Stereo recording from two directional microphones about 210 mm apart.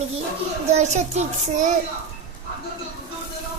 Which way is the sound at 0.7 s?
30° right (ahead or behind).